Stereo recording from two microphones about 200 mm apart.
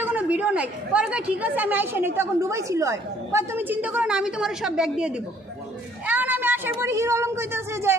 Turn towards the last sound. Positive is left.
turn(degrees=-10)  # may be behind; listen again after turning